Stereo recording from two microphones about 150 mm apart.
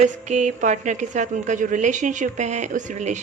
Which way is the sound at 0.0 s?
55° right (ahead or behind).